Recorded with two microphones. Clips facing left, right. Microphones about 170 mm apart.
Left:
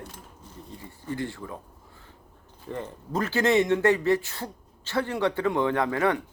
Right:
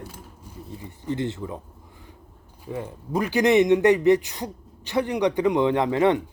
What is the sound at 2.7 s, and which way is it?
Speech, 10° right (ahead or behind).